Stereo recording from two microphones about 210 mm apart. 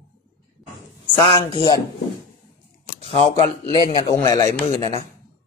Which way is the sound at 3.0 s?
25° left (ahead or behind).